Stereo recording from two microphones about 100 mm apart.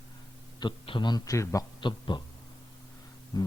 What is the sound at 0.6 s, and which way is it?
A man's voice, 50° left (ahead or behind).